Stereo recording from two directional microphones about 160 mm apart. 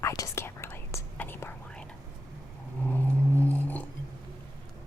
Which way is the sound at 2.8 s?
10° left (ahead or behind).